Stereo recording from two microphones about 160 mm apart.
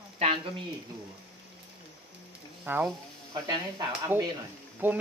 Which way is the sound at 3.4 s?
25° right (ahead or behind).